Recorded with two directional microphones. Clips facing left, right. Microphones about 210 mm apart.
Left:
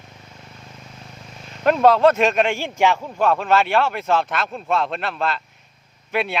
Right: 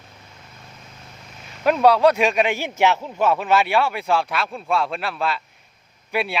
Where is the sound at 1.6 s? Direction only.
Centre (ahead or behind).